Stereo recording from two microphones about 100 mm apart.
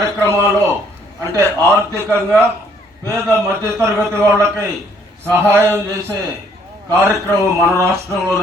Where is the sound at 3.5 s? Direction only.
25° right (ahead or behind).